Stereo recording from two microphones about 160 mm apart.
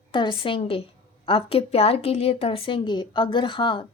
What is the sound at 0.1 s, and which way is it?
A woman's voice, 30° left (ahead or behind).